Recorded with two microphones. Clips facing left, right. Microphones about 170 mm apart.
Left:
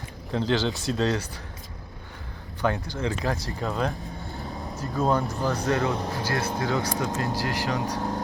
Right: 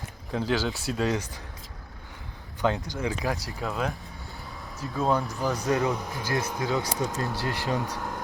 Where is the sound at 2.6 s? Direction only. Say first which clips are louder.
Even; 15° right (ahead or behind).